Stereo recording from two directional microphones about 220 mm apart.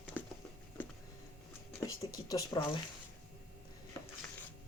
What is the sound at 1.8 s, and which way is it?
Speech, 15° left (ahead or behind).